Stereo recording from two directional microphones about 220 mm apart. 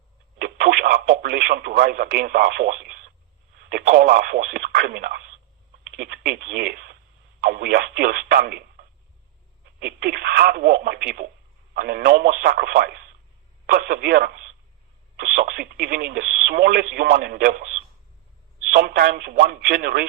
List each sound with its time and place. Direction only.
0.3 s radio: 45° right (ahead or behind)
3.7 s speech: 45° right (ahead or behind)
18.7 s speech: 40° right (ahead or behind)